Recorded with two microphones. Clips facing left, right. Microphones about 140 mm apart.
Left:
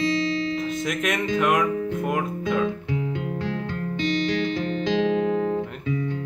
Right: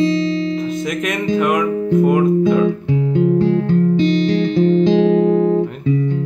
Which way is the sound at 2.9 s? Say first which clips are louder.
Right 12 dB; 30° right (ahead or behind).